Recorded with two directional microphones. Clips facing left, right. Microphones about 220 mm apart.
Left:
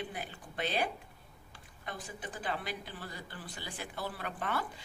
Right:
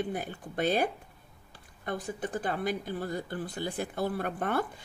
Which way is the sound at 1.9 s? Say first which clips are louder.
Right 9 dB; 50° right (ahead or behind).